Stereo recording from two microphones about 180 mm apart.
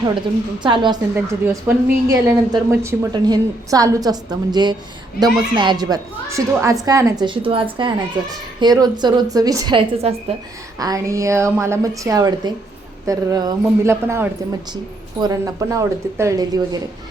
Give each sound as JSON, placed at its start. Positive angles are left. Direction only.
{"t": 0.6, "sound": "speech", "side_deg": -25}
{"t": 1.1, "sound": "speech", "side_deg": -15}
{"t": 10.8, "sound": "a woman's voice", "side_deg": -20}